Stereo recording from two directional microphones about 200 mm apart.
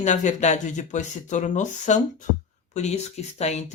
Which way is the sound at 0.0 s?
35° left (ahead or behind).